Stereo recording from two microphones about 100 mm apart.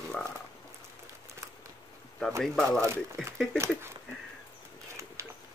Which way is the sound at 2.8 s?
30° right (ahead or behind).